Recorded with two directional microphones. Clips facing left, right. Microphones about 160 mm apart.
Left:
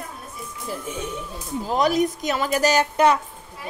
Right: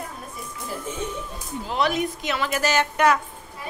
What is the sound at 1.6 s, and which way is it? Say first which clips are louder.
A woman's voice: left 4 dB; 40° left (ahead or behind).